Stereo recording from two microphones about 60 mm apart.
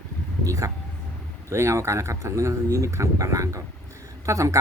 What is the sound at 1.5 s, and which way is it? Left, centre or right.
Speech, right.